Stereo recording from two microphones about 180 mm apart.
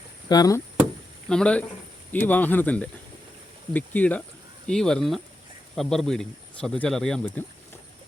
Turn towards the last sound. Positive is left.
turn(degrees=5)  # may be behind; listen again after turning